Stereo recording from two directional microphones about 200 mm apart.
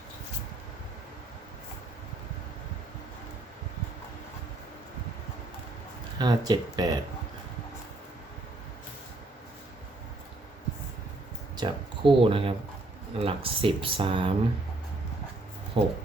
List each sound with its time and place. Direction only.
6.1 s speech: 20° right (ahead or behind)
11.5 s a sound: 25° right (ahead or behind)
13.1 s speech: 25° right (ahead or behind)
15.8 s speech: 30° right (ahead or behind)